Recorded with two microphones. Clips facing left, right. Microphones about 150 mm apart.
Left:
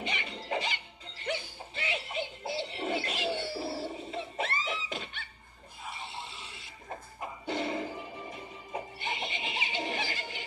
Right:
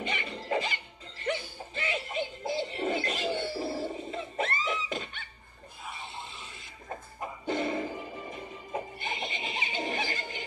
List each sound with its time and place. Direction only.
0.1 s music: 50° right (ahead or behind)
6.2 s a sound: 50° right (ahead or behind)
7.4 s music: 50° right (ahead or behind)